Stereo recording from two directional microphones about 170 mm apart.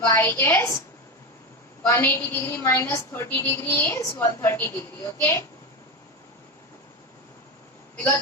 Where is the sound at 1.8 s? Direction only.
15° left (ahead or behind).